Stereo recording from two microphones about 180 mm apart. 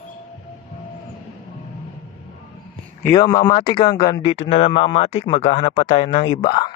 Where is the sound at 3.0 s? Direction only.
20° left (ahead or behind).